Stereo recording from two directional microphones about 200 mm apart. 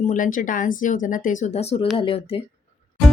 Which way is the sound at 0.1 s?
40° left (ahead or behind).